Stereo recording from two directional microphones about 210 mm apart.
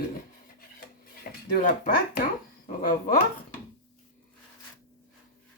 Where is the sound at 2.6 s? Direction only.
40° left (ahead or behind).